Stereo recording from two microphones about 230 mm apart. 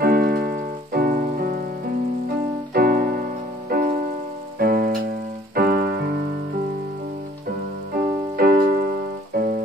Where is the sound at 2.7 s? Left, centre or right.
Right.